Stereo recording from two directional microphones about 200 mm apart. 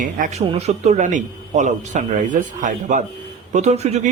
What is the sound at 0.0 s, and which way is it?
Speech, 40° right (ahead or behind).